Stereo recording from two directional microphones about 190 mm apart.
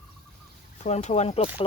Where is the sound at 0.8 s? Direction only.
35° left (ahead or behind).